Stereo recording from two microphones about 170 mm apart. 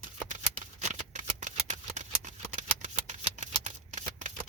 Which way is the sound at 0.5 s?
45° right (ahead or behind).